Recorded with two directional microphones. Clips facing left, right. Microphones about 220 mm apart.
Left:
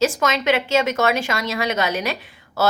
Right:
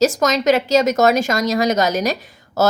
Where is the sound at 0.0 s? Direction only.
40° right (ahead or behind).